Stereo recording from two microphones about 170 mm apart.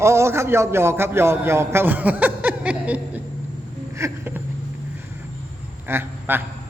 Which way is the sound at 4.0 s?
15° right (ahead or behind).